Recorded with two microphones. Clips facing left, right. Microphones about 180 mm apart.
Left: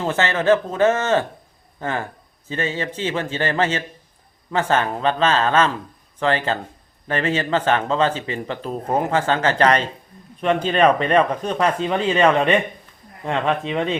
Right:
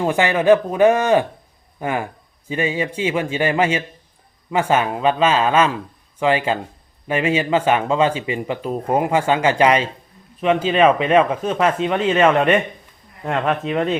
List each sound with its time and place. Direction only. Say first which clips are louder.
0.0 s speech: right 3 dB; 15° right (ahead or behind)